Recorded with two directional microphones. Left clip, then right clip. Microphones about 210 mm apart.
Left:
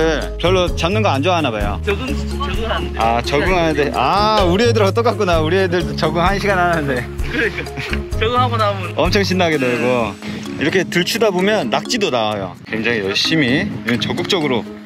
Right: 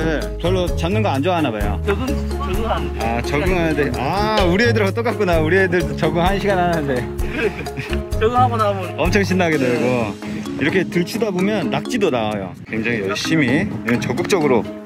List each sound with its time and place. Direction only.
0.0 s speech: 5° right (ahead or behind)
3.0 s speech: 5° right (ahead or behind)
8.2 s speech: 50° right (ahead or behind)
8.9 s speech: 10° right (ahead or behind)
13.9 s speech: 25° right (ahead or behind)